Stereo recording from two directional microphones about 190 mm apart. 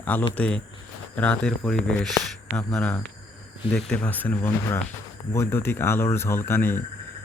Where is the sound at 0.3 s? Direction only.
5° left (ahead or behind).